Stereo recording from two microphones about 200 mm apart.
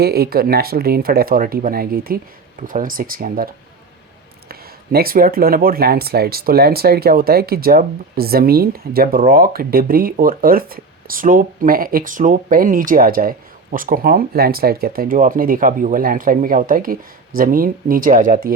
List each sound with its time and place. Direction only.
0.0 s speech: 50° right (ahead or behind)